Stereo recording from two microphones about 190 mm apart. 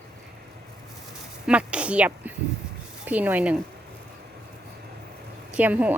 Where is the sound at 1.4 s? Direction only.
5° right (ahead or behind).